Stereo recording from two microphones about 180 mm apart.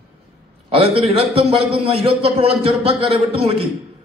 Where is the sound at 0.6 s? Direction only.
30° right (ahead or behind).